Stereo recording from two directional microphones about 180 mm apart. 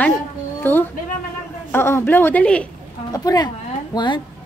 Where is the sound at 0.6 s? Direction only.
10° left (ahead or behind).